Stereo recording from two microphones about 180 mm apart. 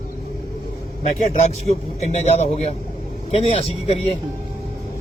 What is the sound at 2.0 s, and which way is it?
Speech, 35° left (ahead or behind).